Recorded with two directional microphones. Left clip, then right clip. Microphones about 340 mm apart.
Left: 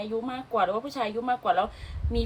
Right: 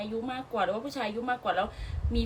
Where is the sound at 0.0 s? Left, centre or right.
Centre.